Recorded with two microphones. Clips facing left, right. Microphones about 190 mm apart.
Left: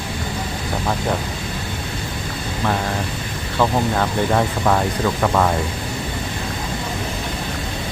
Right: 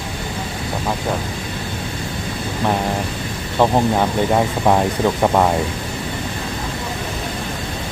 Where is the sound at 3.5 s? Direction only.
20° right (ahead or behind).